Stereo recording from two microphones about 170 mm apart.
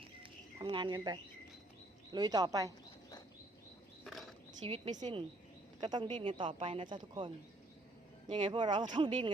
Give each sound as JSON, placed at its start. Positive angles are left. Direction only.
{"t": 0.2, "sound": "bird", "side_deg": -30}
{"t": 2.1, "sound": "speech", "side_deg": -25}
{"t": 4.0, "sound": "a sound", "side_deg": 0}
{"t": 4.6, "sound": "speech", "side_deg": -30}
{"t": 8.3, "sound": "speech", "side_deg": -30}